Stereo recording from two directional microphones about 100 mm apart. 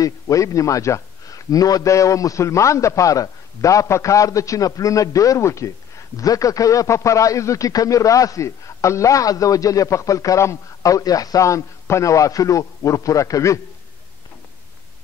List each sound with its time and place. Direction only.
0.0 s a man's voice: 35° left (ahead or behind)